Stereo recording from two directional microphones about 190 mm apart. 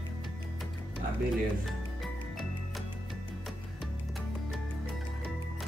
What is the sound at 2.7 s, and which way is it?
Music, centre (ahead or behind).